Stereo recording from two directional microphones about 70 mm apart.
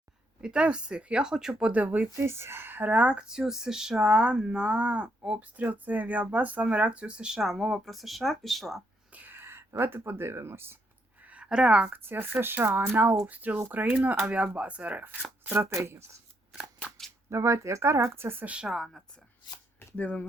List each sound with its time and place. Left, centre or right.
0.4 s speech: centre
2.1 s speech: right; by 8.8 s centre
9.1 s speech: right
11.2 s a sound: right
11.4 s speech: centre
11.9 s speech: right
15.4 s speech: right
16.5 s scissors: centre
17.2 s speech: right
18.4 s speech: centre
18.7 s a woman's voice: centre
20.0 s speech: centre